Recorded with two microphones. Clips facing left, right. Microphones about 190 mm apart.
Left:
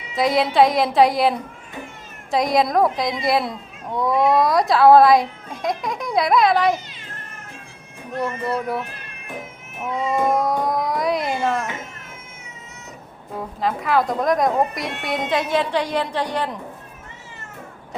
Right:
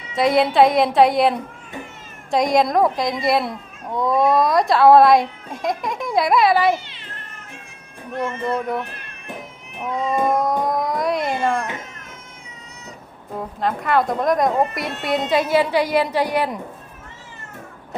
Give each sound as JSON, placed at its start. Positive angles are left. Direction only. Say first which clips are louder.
{"t": 0.1, "sound": "a child's voice", "louder": "right 2 dB", "side_deg": 0}
{"t": 6.8, "sound": "cat", "louder": "even", "side_deg": 45}
{"t": 8.4, "sound": "a child's voice", "louder": "right 1 dB", "side_deg": 5}
{"t": 9.4, "sound": "cat", "louder": "even", "side_deg": 5}
{"t": 13.3, "sound": "a child's voice", "louder": "right 1 dB", "side_deg": 0}